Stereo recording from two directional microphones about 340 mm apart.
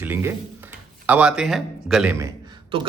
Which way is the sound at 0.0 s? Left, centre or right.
Centre.